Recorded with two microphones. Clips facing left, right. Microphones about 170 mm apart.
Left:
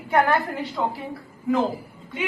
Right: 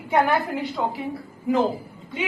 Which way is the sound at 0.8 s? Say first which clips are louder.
Left 1 dB; 10° right (ahead or behind).